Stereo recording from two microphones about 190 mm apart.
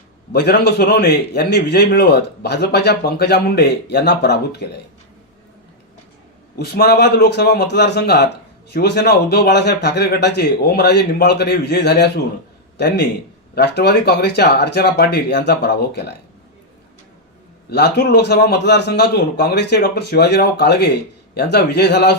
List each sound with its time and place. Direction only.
0.3 s a man's voice: 60° left (ahead or behind)
6.6 s a man's voice: 55° left (ahead or behind)
17.7 s a man's voice: 60° left (ahead or behind)